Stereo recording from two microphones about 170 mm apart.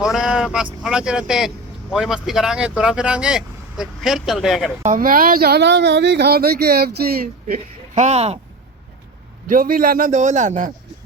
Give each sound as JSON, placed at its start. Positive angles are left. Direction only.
{"t": 0.0, "sound": "speech", "side_deg": -5}
{"t": 4.8, "sound": "speech", "side_deg": -50}
{"t": 7.4, "sound": "a man's voice", "side_deg": -45}
{"t": 9.5, "sound": "a man's voice", "side_deg": -55}